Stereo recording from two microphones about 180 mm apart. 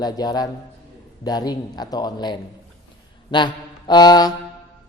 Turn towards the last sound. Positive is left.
turn(degrees=20)  # may be behind; listen again after turning